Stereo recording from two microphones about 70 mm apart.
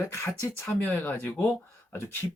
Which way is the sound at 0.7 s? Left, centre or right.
Left.